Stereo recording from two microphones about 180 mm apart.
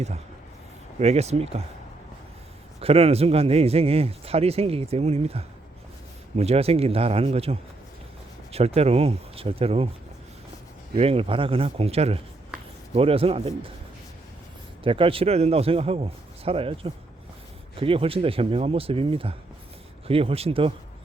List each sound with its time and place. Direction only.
0.9 s speech: 35° right (ahead or behind)
2.8 s speech: 35° right (ahead or behind)
10.9 s speech: 30° right (ahead or behind)
14.8 s speech: 30° right (ahead or behind)